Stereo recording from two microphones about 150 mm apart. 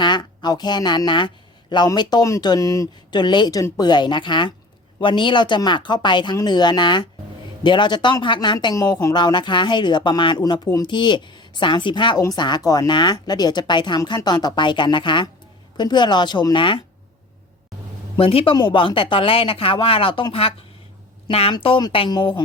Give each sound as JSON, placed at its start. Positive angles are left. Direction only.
{"t": 0.0, "sound": "speech", "side_deg": 30}
{"t": 18.2, "sound": "speech", "side_deg": 40}